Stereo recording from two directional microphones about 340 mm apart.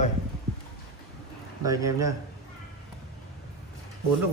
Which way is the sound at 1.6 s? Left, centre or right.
Centre.